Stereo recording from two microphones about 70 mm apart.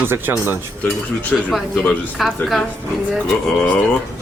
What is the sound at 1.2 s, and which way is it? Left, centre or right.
Cutlery, left.